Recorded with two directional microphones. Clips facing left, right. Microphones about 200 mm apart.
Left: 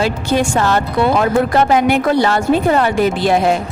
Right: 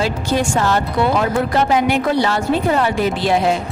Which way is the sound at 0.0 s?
60° left (ahead or behind).